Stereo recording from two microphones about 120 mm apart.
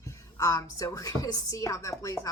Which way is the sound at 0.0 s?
25° left (ahead or behind).